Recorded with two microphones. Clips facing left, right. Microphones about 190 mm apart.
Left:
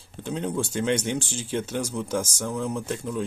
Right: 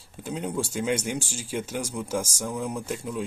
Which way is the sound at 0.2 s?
10° right (ahead or behind).